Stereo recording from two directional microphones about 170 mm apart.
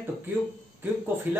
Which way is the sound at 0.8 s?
10° right (ahead or behind).